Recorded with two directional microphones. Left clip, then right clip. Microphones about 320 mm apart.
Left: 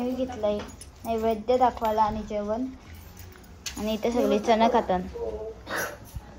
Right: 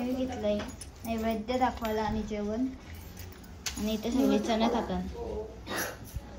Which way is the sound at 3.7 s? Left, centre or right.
Centre.